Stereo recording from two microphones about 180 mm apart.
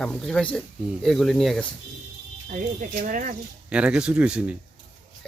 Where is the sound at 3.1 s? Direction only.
45° right (ahead or behind).